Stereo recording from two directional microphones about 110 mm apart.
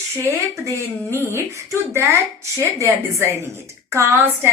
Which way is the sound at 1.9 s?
25° right (ahead or behind).